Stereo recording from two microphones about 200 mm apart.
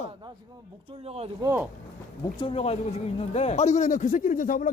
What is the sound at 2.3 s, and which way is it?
A man's voice, 25° left (ahead or behind).